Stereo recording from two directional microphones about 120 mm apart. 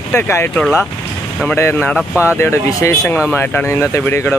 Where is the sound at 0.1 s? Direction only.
15° left (ahead or behind).